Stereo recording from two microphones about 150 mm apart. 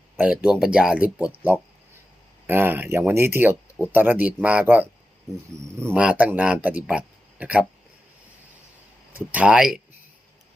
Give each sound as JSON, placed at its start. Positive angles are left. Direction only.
{"t": 0.2, "sound": "speech", "side_deg": -10}
{"t": 2.5, "sound": "speech", "side_deg": -15}
{"t": 9.1, "sound": "speech", "side_deg": -10}